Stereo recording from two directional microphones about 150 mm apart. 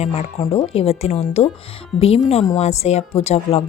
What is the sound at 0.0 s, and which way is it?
Speech, 45° left (ahead or behind).